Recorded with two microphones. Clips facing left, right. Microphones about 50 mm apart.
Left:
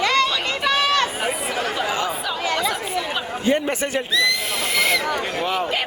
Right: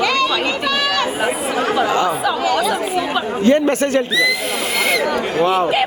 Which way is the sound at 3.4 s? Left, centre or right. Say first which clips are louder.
Right 7 dB; centre.